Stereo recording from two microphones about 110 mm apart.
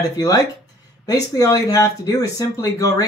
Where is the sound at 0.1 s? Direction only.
30° left (ahead or behind).